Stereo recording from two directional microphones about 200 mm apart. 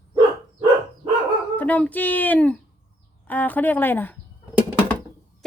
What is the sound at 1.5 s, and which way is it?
A woman's voice, 10° left (ahead or behind).